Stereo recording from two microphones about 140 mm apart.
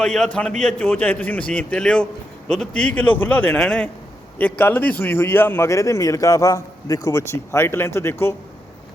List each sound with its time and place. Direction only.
0.0 s a man's voice: 5° left (ahead or behind)